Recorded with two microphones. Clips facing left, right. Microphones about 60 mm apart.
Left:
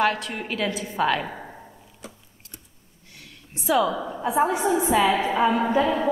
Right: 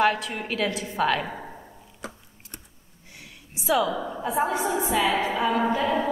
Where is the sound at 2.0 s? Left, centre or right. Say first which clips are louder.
Right 6 dB; right.